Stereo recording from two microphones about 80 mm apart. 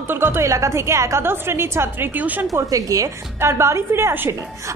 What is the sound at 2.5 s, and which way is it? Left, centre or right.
A woman's voice, right.